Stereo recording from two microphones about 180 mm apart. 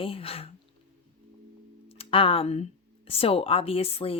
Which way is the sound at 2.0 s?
30° left (ahead or behind).